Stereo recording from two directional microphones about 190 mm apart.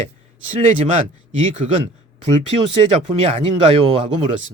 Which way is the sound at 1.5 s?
40° right (ahead or behind).